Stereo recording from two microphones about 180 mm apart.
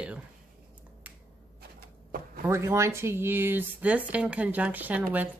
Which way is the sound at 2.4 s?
15° right (ahead or behind).